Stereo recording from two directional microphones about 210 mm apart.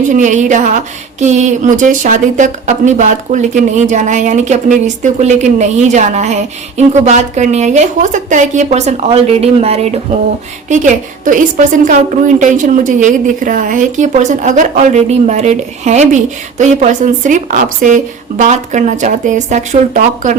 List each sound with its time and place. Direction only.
0.1 s a woman's voice: 35° right (ahead or behind)